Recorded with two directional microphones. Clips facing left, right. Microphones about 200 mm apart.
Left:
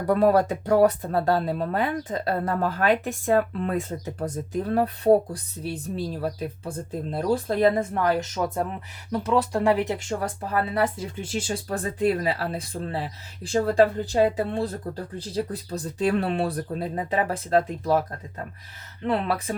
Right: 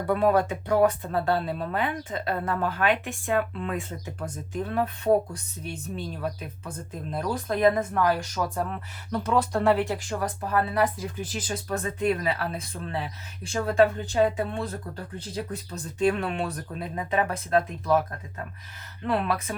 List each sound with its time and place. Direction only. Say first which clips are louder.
0.1 s speech: left 3 dB; 40° left (ahead or behind); by 8.8 s 20° left (ahead or behind)
9.1 s speech: left 2 dB; 5° left (ahead or behind); by 14.7 s 35° left (ahead or behind)
15.7 s speech: left 1 dB; 35° left (ahead or behind)
19.0 s speech: left 2 dB; 25° left (ahead or behind)